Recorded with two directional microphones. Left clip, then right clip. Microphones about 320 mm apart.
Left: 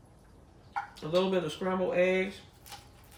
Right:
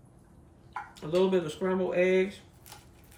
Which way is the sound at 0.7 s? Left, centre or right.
Centre.